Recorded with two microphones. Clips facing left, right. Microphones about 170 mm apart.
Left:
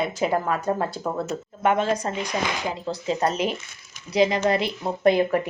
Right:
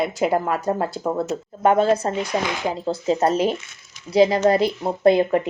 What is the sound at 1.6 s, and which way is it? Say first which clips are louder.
Speech: right 5 dB; 35° right (ahead or behind).